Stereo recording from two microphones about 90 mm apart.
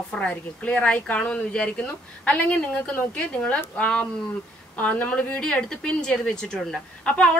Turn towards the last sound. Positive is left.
turn(degrees=10)  # may be behind; listen again after turning